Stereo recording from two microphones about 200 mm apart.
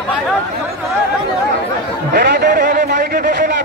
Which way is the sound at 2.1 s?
55° right (ahead or behind).